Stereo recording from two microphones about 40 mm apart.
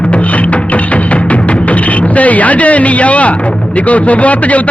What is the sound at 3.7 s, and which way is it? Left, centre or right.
Speech, left.